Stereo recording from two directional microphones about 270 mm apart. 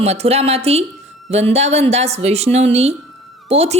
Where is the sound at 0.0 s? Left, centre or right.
Right.